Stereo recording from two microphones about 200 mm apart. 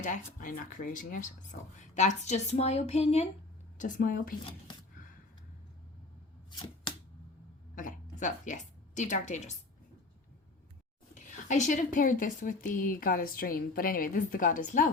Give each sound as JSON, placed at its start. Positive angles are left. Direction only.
{"t": 0.3, "sound": "speech", "side_deg": 45}
{"t": 7.8, "sound": "a woman's voice", "side_deg": 40}
{"t": 11.1, "sound": "speech", "side_deg": 40}